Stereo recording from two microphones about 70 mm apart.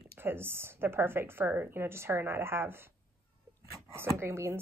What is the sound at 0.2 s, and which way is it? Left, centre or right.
Speech, right.